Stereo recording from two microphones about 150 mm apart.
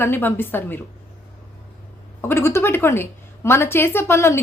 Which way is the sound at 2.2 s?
15° left (ahead or behind).